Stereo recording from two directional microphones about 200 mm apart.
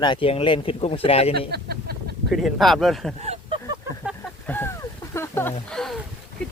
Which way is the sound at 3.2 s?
30° right (ahead or behind).